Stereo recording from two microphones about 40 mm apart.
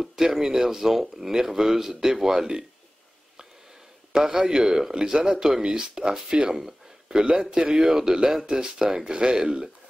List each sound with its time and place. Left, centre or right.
0.0 s speech: centre
4.1 s speech: centre